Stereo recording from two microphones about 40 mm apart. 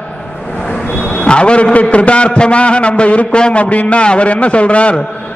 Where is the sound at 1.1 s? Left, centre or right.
Left.